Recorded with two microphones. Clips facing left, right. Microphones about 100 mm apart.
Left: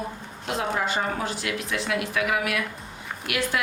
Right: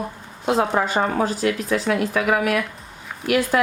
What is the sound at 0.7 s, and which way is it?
Speech, 55° right (ahead or behind).